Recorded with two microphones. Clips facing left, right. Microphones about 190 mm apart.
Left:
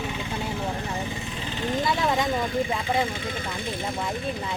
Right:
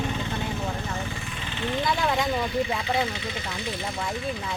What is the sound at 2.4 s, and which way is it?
Speech, 45° left (ahead or behind).